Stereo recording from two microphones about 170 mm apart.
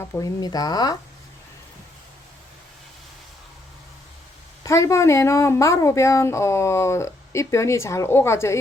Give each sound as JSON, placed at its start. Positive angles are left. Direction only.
{"t": 0.0, "sound": "speech", "side_deg": 15}
{"t": 4.6, "sound": "speech", "side_deg": 20}